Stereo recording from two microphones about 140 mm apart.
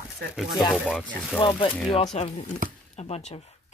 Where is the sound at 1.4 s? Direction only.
35° left (ahead or behind).